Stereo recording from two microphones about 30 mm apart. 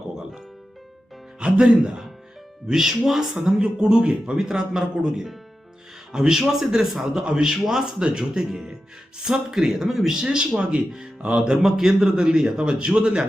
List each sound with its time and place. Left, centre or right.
1.4 s speech: right
2.7 s speech: centre
3.3 s speech: right
4.4 s a man's voice: centre
7.6 s speech: centre
7.9 s speech: right
9.5 s speech: centre
10.3 s speech: right
11.6 s speech: centre